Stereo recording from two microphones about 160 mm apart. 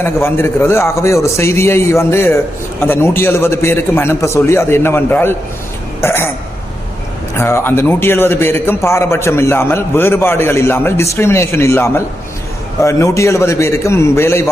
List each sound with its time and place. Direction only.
0.0 s a man's voice: 15° left (ahead or behind)
6.0 s burping: 15° left (ahead or behind)
7.3 s a man's voice: 15° left (ahead or behind)